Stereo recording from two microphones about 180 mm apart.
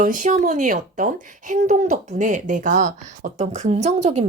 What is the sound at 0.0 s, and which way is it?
A woman's voice, 45° right (ahead or behind).